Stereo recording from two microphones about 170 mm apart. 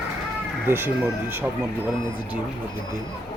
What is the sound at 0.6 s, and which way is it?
Speech, 15° right (ahead or behind).